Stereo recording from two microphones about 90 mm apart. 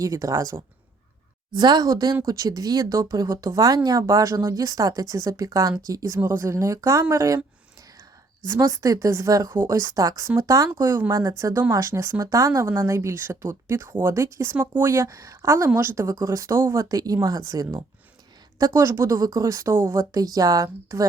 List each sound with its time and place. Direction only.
0.0 s speech: 35° right (ahead or behind)
1.5 s a woman's voice: 50° right (ahead or behind)
6.1 s speech: 30° right (ahead or behind)
8.4 s speech: 35° right (ahead or behind)
16.0 s speech: 35° right (ahead or behind)
16.9 s a woman's voice: 45° right (ahead or behind)